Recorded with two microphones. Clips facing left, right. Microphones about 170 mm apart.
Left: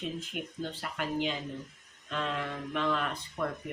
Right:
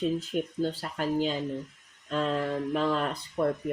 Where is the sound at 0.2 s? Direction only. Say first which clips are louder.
Right 8 dB; 40° right (ahead or behind).